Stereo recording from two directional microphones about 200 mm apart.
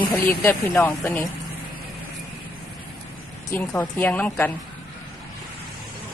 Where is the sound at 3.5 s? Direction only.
10° left (ahead or behind).